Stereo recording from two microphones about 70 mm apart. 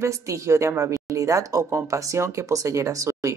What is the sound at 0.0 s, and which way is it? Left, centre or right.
A woman's voice, right.